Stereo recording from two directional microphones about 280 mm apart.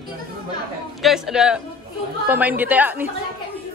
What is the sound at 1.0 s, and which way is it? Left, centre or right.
A man's voice, centre.